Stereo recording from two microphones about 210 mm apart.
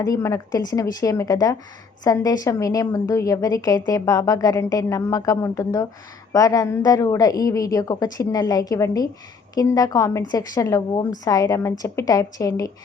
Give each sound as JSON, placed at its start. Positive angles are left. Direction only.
{"t": 0.0, "sound": "a woman's voice", "side_deg": 15}